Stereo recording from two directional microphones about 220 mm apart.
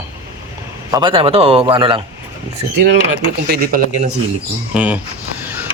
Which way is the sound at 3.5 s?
40° right (ahead or behind).